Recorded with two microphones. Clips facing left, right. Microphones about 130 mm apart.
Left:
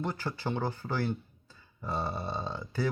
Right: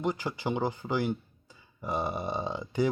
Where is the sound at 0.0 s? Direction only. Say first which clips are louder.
Right 3 dB; 15° right (ahead or behind).